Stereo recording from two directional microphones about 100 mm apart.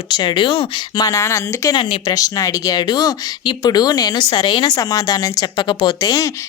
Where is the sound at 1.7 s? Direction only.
50° left (ahead or behind).